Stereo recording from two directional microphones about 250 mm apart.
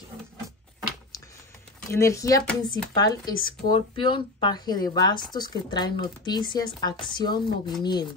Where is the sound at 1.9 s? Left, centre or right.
Centre.